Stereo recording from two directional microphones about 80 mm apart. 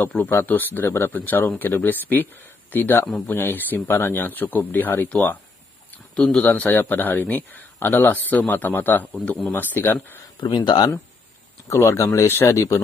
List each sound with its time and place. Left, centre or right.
0.2 s speech: left
6.1 s a man's voice: centre
6.5 s speech: left
9.2 s a man's voice: centre
9.5 s speech: left
10.4 s speech: left
11.7 s speech: left
12.3 s speech: left
12.5 s speech: left